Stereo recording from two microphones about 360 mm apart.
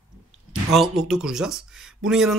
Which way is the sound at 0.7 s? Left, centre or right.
Centre.